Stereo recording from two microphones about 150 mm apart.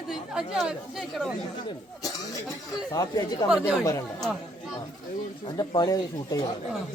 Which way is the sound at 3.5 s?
5° right (ahead or behind).